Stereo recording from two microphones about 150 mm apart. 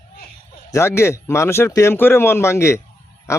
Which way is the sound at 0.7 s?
15° left (ahead or behind).